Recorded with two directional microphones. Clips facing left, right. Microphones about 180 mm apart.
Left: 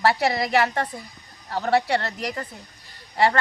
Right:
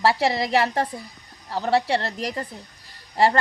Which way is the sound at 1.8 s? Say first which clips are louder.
Even; 30° right (ahead or behind).